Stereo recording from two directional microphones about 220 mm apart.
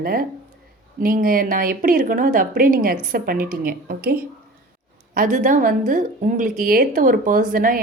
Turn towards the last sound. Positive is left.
turn(degrees=-40)  # may be behind; listen again after turning